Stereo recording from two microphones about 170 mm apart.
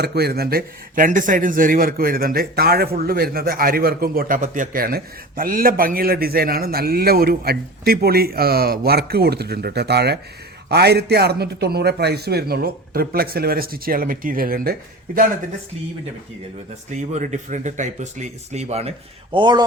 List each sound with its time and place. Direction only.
0.0 s speech: 70° right (ahead or behind)
16.9 s speech: 45° right (ahead or behind); by 19.6 s 25° right (ahead or behind)